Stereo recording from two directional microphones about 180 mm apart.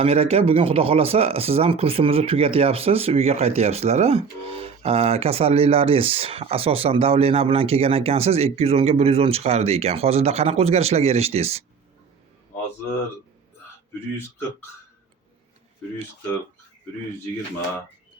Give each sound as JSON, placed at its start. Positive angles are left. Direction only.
{"t": 0.0, "sound": "speech", "side_deg": -35}